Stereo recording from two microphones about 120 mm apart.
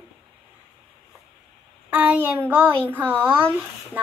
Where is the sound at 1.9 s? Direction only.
15° right (ahead or behind).